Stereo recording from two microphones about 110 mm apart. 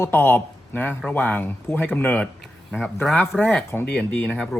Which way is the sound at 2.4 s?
5° left (ahead or behind).